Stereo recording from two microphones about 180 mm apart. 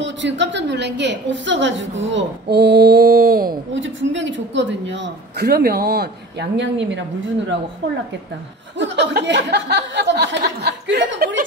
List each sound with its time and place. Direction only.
0.0 s a woman's voice: 85° right
2.0 s a sound: 80° right; by 3.5 s 55° right (ahead or behind)
3.7 s a woman's voice: 90° right; by 6.0 s 60° right (ahead or behind)
6.5 s a woman's voice: 80° right
8.7 s speech: 80° right